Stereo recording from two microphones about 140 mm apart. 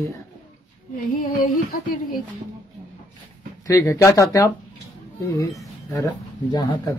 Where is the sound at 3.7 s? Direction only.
20° left (ahead or behind).